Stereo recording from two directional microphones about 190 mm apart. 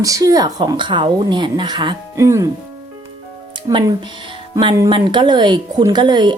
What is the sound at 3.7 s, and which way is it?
Speech, 25° right (ahead or behind).